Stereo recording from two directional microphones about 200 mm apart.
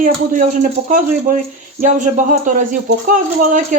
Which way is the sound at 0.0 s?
40° right (ahead or behind).